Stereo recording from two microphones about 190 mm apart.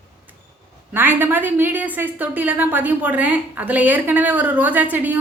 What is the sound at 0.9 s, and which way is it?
A woman's voice, 10° right (ahead or behind).